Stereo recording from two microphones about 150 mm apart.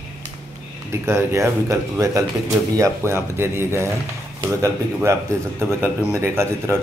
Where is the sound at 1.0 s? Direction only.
20° right (ahead or behind).